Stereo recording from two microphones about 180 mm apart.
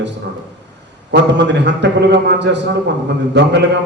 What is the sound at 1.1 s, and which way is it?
A man's voice, 75° right (ahead or behind).